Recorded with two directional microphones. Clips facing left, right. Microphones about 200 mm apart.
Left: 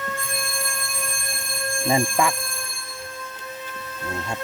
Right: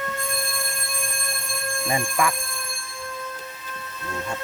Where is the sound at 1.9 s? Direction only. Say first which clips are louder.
Left 3 dB; 25° left (ahead or behind).